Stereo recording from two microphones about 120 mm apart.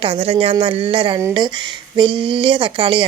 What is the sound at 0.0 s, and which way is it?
A woman's voice, 55° right (ahead or behind).